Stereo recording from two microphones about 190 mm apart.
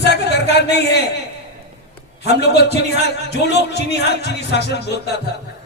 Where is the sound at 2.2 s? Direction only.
60° left (ahead or behind).